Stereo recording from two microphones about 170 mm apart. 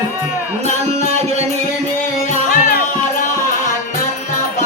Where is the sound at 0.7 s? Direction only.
40° right (ahead or behind).